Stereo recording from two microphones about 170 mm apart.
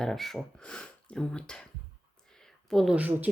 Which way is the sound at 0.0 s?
Centre (ahead or behind).